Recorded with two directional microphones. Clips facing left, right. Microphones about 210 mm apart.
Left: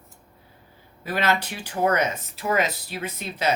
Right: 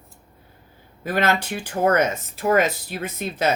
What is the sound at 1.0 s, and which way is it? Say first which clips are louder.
Speech: right 3 dB; 50° right (ahead or behind).